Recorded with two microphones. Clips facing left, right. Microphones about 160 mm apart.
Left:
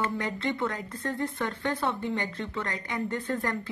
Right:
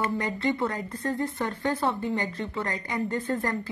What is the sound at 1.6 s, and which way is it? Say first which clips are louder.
A woman's voice: right 3 dB; centre (ahead or behind).